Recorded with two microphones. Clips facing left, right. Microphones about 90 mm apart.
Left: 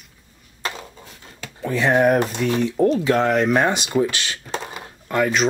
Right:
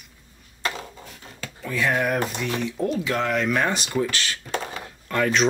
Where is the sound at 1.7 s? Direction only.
30° left (ahead or behind).